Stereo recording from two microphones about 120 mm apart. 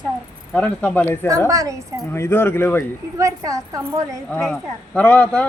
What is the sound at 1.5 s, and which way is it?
Speech, 30° right (ahead or behind).